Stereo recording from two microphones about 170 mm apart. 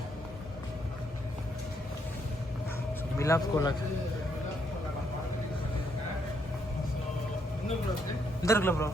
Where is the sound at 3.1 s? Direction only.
20° left (ahead or behind).